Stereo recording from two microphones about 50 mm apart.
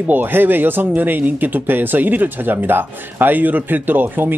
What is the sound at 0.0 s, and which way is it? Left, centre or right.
Speech, right.